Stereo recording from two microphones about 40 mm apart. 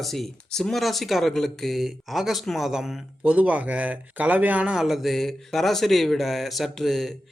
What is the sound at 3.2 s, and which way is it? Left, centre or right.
Speech, right.